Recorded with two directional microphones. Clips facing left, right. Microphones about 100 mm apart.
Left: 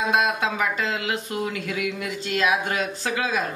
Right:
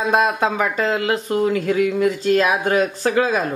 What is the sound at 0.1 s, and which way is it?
Speech, 40° right (ahead or behind).